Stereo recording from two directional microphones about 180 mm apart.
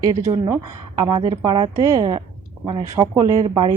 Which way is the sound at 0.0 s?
20° right (ahead or behind).